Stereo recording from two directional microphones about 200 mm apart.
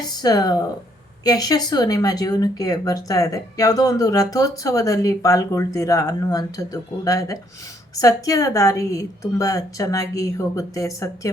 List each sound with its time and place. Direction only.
0.0 s speech: 20° left (ahead or behind)